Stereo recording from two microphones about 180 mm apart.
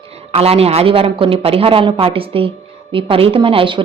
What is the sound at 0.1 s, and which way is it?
A woman's voice, 35° right (ahead or behind).